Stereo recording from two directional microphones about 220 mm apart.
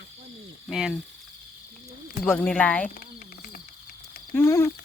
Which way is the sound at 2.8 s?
40° left (ahead or behind).